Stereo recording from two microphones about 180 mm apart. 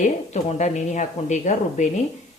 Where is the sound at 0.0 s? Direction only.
40° left (ahead or behind).